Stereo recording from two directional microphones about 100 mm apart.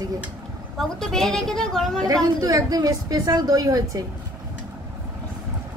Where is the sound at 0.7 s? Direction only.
5° left (ahead or behind).